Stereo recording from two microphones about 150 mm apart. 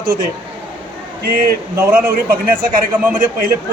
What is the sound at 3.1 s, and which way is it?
Speech, 65° right (ahead or behind).